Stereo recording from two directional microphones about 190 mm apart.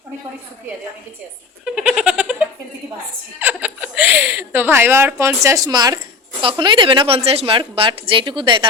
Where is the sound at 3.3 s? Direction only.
10° right (ahead or behind).